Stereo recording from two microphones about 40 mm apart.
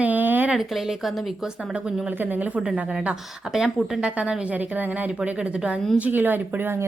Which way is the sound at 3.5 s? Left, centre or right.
Centre.